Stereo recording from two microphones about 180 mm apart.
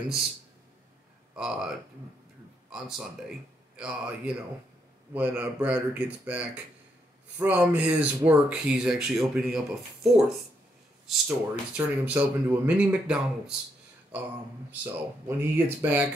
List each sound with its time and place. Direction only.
1.3 s speech: 5° right (ahead or behind)
3.7 s speech: 5° right (ahead or behind)
14.7 s speech: 10° right (ahead or behind)